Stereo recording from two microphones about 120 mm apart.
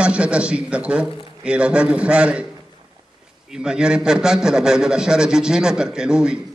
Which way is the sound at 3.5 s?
5° right (ahead or behind).